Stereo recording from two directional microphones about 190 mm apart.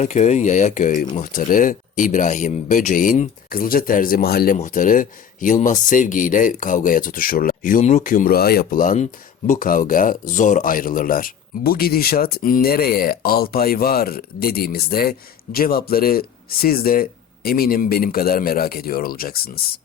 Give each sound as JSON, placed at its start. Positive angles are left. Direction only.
{"t": 0.0, "sound": "speech", "side_deg": 35}
{"t": 4.5, "sound": "speech", "side_deg": 40}